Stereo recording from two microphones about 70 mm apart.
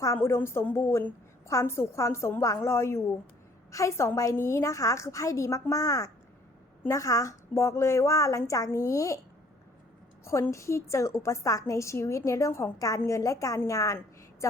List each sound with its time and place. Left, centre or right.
0.2 s a woman's voice: left
10.5 s a woman's voice: left